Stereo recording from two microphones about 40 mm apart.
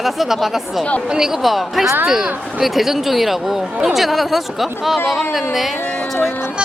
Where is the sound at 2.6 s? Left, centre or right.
Centre.